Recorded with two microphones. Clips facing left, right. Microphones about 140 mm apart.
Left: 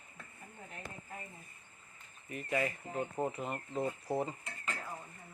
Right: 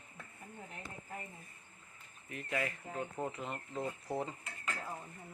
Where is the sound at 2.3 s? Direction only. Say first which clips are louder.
Left 3 dB; 5° left (ahead or behind).